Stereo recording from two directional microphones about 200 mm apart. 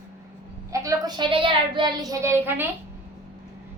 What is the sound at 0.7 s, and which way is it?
A woman's voice, 15° right (ahead or behind).